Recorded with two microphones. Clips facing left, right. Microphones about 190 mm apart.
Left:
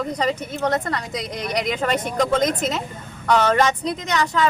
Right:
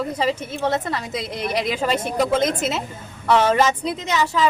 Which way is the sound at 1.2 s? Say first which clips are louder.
Right 2 dB; 25° right (ahead or behind).